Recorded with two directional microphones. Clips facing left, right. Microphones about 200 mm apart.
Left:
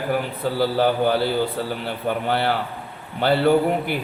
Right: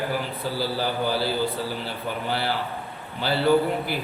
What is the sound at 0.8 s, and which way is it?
A man's voice, 60° left (ahead or behind).